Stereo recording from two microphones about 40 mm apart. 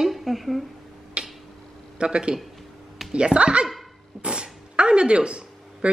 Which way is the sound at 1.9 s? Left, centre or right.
Right.